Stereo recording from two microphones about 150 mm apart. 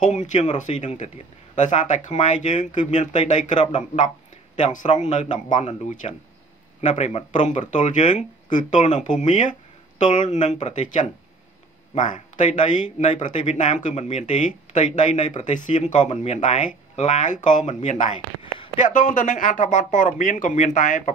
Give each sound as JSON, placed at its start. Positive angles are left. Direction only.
{"t": 0.0, "sound": "a man's voice", "side_deg": 55}